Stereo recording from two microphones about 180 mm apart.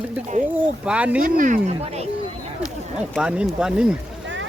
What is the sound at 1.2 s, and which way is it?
Speech, 45° right (ahead or behind).